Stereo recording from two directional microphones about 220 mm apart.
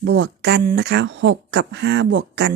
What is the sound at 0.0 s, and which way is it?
Speech, 55° right (ahead or behind).